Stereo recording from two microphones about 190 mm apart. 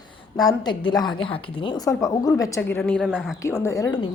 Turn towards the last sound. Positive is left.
turn(degrees=15)  # may be behind; listen again after turning